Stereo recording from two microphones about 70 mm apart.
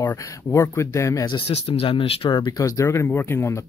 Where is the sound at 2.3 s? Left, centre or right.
Left.